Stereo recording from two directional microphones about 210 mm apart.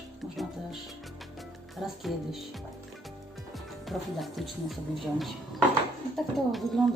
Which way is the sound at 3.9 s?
Centre (ahead or behind).